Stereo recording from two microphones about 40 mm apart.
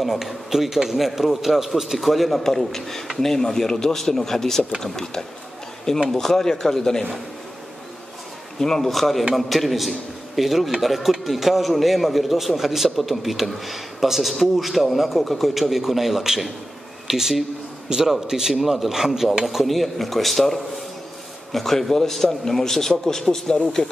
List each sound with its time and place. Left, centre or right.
0.0 s a man's voice: centre
8.5 s a man's voice: centre